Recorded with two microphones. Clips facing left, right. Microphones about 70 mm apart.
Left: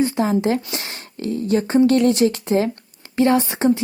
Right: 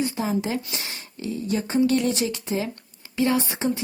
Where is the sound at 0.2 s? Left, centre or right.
Left.